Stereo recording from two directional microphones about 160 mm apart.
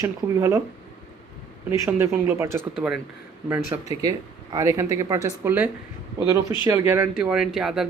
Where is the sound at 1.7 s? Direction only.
15° right (ahead or behind).